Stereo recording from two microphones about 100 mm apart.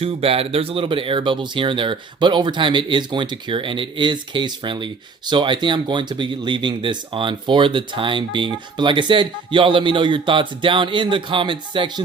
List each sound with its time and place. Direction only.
0.0 s speech: 70° right (ahead or behind); by 12.0 s 55° right (ahead or behind)